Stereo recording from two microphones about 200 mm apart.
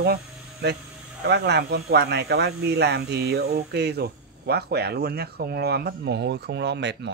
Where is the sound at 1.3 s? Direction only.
60° right (ahead or behind).